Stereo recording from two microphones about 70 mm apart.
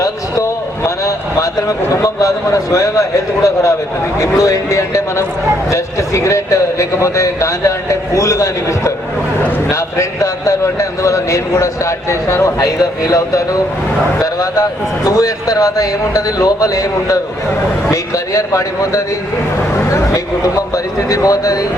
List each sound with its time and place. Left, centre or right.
0.0 s a man's voice: left